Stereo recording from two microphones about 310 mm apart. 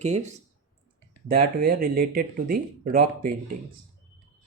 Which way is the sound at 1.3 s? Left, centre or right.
Right.